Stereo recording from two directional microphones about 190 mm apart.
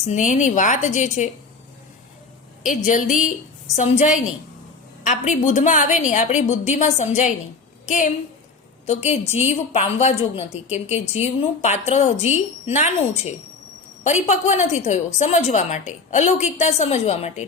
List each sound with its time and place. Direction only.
0.0 s a woman's voice: 40° left (ahead or behind)
2.6 s a woman's voice: 40° left (ahead or behind)
14.0 s a woman's voice: 40° left (ahead or behind)